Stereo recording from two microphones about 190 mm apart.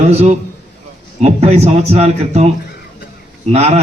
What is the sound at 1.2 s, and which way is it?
A man's voice, 35° right (ahead or behind).